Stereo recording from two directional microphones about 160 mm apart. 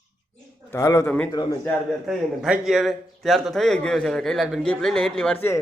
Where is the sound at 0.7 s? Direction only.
20° left (ahead or behind).